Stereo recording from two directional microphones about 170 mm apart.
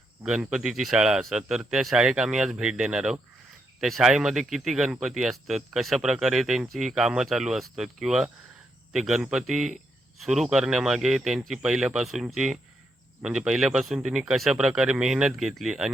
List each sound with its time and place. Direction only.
0.3 s speech: 5° right (ahead or behind)